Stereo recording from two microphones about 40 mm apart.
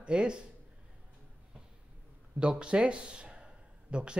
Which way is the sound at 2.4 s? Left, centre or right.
Right.